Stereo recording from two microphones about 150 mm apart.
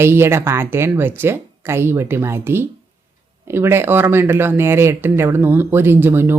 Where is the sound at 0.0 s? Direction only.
15° right (ahead or behind).